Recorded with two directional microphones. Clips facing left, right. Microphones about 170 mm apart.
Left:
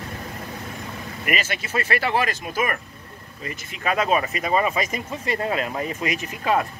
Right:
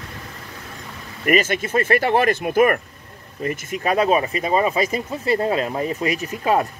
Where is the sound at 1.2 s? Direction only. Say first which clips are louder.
Right 9 dB; 45° right (ahead or behind).